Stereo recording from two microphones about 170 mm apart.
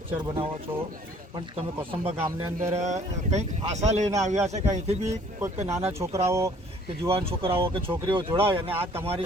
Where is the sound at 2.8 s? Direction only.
40° right (ahead or behind).